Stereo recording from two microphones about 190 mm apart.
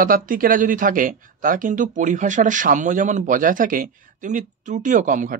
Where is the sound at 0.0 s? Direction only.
45° right (ahead or behind).